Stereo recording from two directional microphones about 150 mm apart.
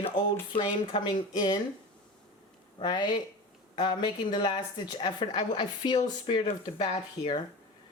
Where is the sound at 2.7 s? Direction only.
30° left (ahead or behind).